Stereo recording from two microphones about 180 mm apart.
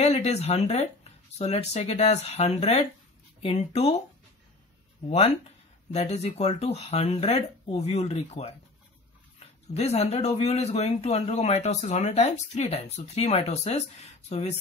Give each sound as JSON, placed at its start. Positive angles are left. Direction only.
{"t": 0.0, "sound": "speech", "side_deg": 35}
{"t": 5.9, "sound": "speech", "side_deg": 40}
{"t": 9.8, "sound": "speech", "side_deg": 35}